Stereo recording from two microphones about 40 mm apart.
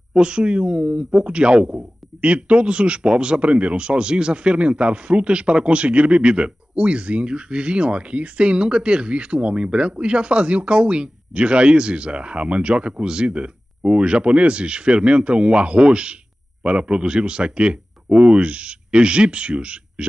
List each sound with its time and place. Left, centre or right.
0.1 s speech: right